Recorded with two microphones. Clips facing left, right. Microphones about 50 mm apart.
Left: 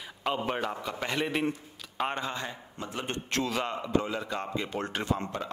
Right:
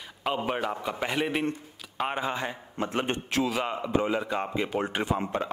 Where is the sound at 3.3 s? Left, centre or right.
Centre.